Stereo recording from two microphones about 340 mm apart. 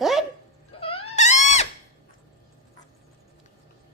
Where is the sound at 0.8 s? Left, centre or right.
Centre.